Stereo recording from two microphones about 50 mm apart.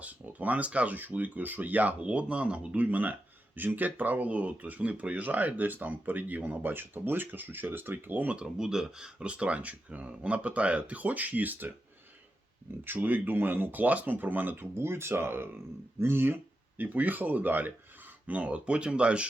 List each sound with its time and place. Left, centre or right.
0.0 s speech: right
2.0 s speech: right
8.5 s speech: centre; by 11.7 s right
12.8 s speech: right
18.3 s speech: right